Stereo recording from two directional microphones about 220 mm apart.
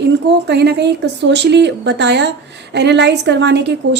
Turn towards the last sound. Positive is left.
turn(degrees=-50)  # may be behind; listen again after turning